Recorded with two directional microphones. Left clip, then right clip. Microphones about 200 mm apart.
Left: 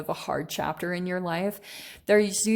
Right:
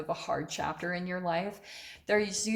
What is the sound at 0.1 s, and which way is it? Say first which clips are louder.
A woman's voice: left 4 dB; 60° left (ahead or behind).